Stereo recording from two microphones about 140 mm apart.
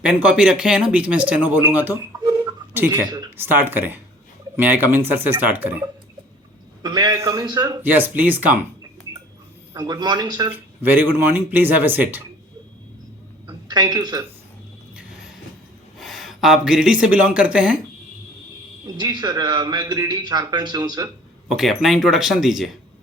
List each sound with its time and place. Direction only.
0.0 s speech: 10° right (ahead or behind)
6.8 s a man's voice: 30° right (ahead or behind)
7.8 s speech: 15° right (ahead or behind)
9.7 s a man's voice: 30° right (ahead or behind)
10.5 s speech: 15° right (ahead or behind)
13.5 s speech: 30° right (ahead or behind)
16.0 s speech: centre (ahead or behind)
18.9 s a man's voice: 30° right (ahead or behind)
21.5 s speech: centre (ahead or behind)